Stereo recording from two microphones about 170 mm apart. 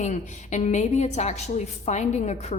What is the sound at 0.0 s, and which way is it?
A woman's voice, 45° left (ahead or behind).